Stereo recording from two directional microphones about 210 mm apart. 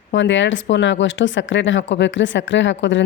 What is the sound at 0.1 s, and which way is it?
Speech, 60° left (ahead or behind).